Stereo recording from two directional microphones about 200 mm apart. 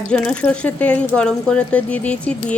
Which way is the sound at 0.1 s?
5° left (ahead or behind).